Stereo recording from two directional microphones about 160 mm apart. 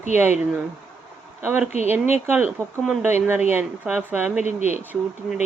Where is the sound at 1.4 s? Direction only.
10° right (ahead or behind).